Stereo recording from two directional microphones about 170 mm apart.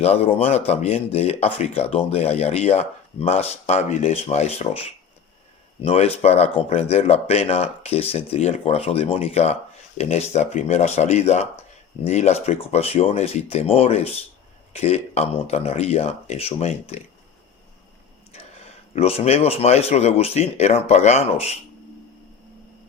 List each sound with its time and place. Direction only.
0.0 s speech: 35° left (ahead or behind)
5.8 s speech: 35° left (ahead or behind)
18.3 s speech: 40° left (ahead or behind)